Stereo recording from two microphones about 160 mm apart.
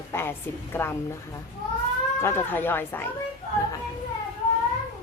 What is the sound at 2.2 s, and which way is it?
Speech, 15° left (ahead or behind).